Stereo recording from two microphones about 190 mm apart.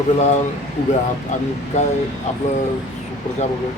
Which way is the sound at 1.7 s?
35° left (ahead or behind).